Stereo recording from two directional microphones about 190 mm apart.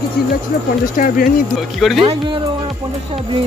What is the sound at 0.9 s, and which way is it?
Speech, 45° left (ahead or behind).